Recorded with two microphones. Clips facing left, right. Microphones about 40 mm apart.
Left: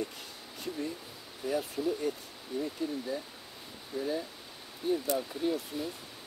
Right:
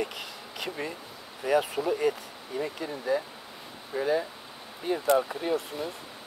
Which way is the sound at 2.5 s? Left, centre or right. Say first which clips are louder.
Right 2 dB; right.